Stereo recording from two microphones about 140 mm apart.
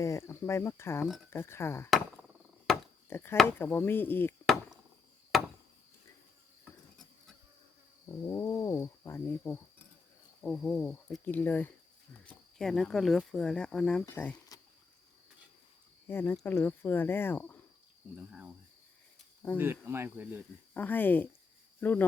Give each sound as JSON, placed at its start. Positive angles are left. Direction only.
{"t": 0.0, "sound": "speech", "side_deg": 20}
{"t": 2.7, "sound": "chop", "side_deg": 5}
{"t": 3.1, "sound": "speech", "side_deg": 15}
{"t": 5.3, "sound": "chop", "side_deg": 0}
{"t": 8.3, "sound": "speech", "side_deg": 25}
{"t": 16.0, "sound": "speech", "side_deg": 15}
{"t": 19.5, "sound": "speech", "side_deg": -15}
{"t": 20.7, "sound": "speech", "side_deg": 10}